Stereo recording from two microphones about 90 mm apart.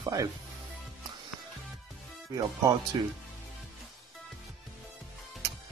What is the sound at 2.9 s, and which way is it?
Speech, 70° right (ahead or behind).